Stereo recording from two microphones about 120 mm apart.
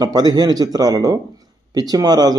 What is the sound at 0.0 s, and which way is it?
Speech, 35° right (ahead or behind).